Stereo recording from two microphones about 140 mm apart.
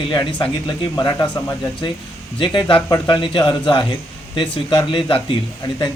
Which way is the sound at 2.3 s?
35° left (ahead or behind).